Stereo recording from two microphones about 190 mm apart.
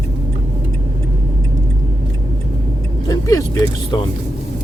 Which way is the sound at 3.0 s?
20° left (ahead or behind).